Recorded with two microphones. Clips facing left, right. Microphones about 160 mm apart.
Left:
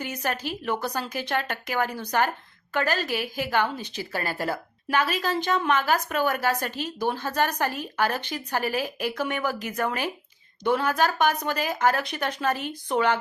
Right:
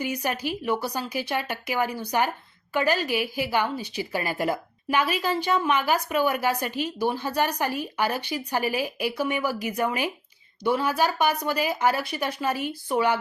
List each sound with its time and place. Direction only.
0.0 s a woman's voice: 10° right (ahead or behind)